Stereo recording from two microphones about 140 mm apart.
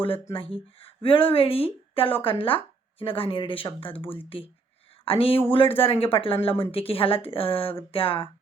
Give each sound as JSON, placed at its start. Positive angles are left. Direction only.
{"t": 0.3, "sound": "a woman's voice", "side_deg": 40}